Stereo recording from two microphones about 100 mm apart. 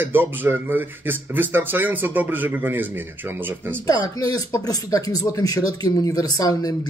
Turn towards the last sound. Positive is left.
turn(degrees=35)  # may be behind; listen again after turning